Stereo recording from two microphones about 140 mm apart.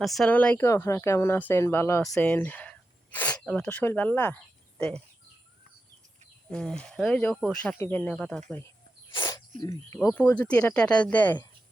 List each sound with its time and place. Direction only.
0.0 s speech: centre (ahead or behind)
6.5 s speech: 5° left (ahead or behind)
9.1 s a sound: 25° left (ahead or behind)
9.6 s speech: 20° left (ahead or behind)